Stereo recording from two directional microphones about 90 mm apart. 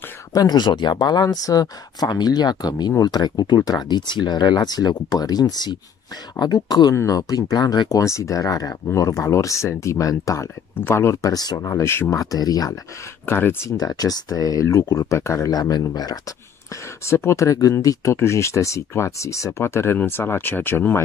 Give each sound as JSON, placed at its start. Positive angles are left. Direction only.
{"t": 0.3, "sound": "speech", "side_deg": 45}
{"t": 8.0, "sound": "speech", "side_deg": 35}
{"t": 10.8, "sound": "speech", "side_deg": 25}
{"t": 11.6, "sound": "speech", "side_deg": 30}
{"t": 12.2, "sound": "speech", "side_deg": 40}
{"t": 13.2, "sound": "speech", "side_deg": 25}
{"t": 13.7, "sound": "speech", "side_deg": 45}
{"t": 15.5, "sound": "speech", "side_deg": 45}
{"t": 17.0, "sound": "speech", "side_deg": 30}